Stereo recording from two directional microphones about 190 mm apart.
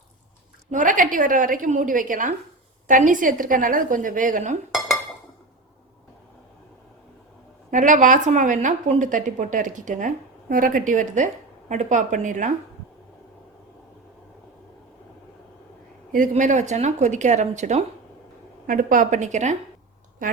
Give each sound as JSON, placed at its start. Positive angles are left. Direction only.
{"t": 0.7, "sound": "a woman's voice", "side_deg": -45}
{"t": 7.7, "sound": "a woman's voice", "side_deg": -40}
{"t": 16.1, "sound": "a woman's voice", "side_deg": -40}